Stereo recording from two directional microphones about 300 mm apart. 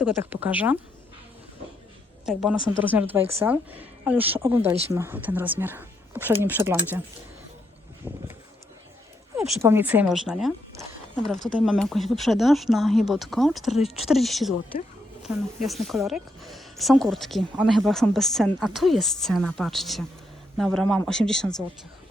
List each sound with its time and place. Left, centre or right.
0.0 s speech: centre
2.2 s speech: centre
8.0 s speech: centre
9.3 s speech: centre